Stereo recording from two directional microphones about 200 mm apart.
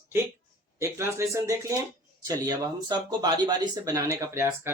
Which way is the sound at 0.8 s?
15° right (ahead or behind).